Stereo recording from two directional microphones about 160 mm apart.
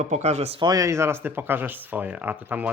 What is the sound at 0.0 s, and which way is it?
Speech, 45° right (ahead or behind).